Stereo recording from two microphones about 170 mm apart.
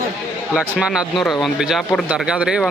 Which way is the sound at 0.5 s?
5° right (ahead or behind).